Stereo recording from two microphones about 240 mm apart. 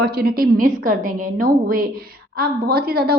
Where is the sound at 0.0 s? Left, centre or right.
Right.